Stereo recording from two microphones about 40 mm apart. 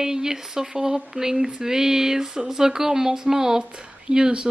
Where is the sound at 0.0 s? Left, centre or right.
Centre.